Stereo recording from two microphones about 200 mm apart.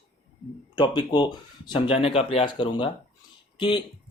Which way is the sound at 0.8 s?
25° left (ahead or behind).